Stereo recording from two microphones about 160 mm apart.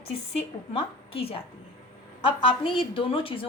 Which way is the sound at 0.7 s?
35° left (ahead or behind).